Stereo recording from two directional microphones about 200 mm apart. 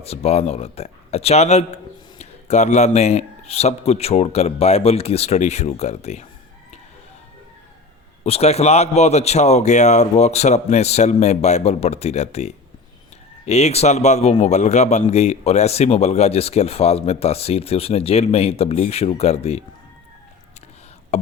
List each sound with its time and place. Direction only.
0.0 s speech: 30° left (ahead or behind)
8.2 s speech: 30° left (ahead or behind)
21.1 s speech: 35° left (ahead or behind)